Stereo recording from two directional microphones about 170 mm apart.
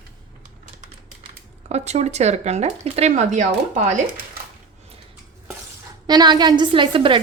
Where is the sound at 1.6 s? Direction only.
40° right (ahead or behind).